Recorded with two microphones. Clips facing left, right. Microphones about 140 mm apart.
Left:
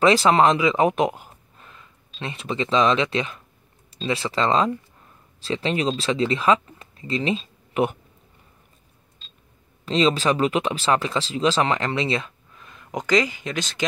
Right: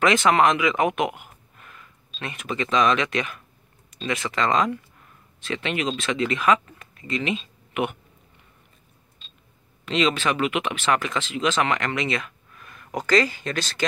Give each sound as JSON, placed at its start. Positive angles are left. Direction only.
{"t": 0.0, "sound": "speech", "side_deg": 30}
{"t": 9.8, "sound": "speech", "side_deg": 35}